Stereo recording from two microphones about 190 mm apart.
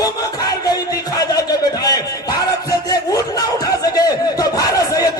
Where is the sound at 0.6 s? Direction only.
20° left (ahead or behind).